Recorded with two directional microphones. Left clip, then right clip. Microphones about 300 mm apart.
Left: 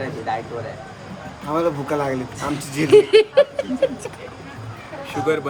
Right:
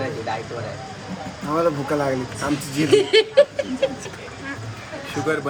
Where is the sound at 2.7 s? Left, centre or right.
Left.